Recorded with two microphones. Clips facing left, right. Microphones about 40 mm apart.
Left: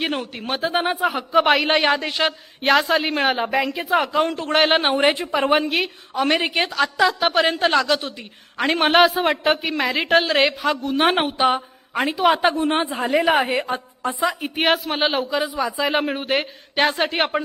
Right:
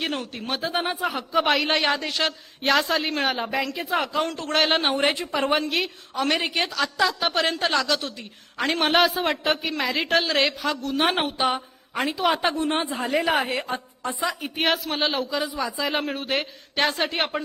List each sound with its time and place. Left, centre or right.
0.0 s a man's voice: centre